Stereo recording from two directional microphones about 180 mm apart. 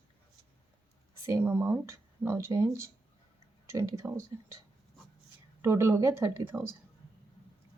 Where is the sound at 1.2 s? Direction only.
15° right (ahead or behind).